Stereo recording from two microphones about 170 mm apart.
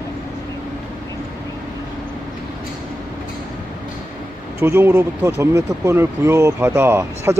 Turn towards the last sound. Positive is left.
turn(degrees=-15)  # may be behind; listen again after turning